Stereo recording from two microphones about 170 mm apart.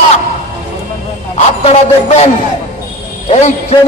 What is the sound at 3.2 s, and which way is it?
Speech, 40° left (ahead or behind).